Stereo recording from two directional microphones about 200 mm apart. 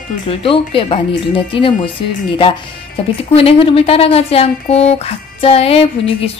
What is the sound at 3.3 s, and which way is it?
Speech, 30° left (ahead or behind).